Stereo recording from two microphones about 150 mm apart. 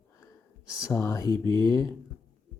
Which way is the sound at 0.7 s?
20° left (ahead or behind).